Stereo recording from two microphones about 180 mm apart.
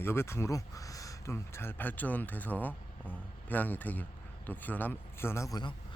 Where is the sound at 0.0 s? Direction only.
15° left (ahead or behind).